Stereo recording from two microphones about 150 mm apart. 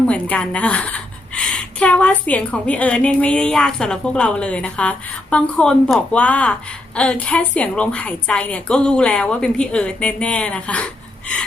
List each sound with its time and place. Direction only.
0.1 s speech: 10° left (ahead or behind)